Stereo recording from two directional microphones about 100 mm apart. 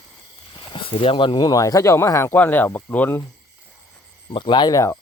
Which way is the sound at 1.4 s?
35° left (ahead or behind).